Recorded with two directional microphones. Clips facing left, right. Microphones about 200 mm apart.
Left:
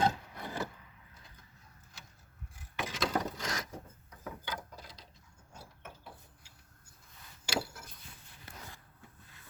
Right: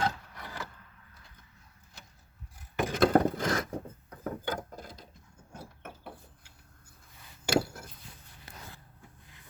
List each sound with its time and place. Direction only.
0.0 s wood: 20° left (ahead or behind)
2.7 s wood: 50° right (ahead or behind)
5.5 s a sound: 55° right (ahead or behind)
7.4 s wood: 45° right (ahead or behind)